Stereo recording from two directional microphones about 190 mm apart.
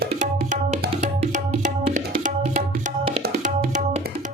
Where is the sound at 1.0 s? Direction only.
40° right (ahead or behind).